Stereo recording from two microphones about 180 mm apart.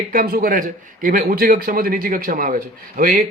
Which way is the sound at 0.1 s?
55° right (ahead or behind).